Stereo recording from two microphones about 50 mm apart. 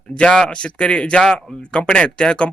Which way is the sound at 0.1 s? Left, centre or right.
Centre.